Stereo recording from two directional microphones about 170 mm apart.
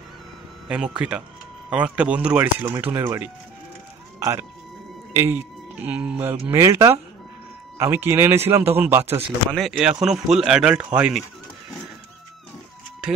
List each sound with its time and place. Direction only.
0.7 s speech: 5° right (ahead or behind)
9.5 s speech: centre (ahead or behind)